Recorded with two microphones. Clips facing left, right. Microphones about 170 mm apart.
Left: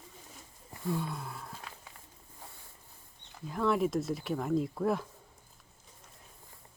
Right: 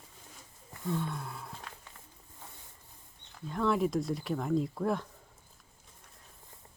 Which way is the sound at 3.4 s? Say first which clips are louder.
Even; centre (ahead or behind).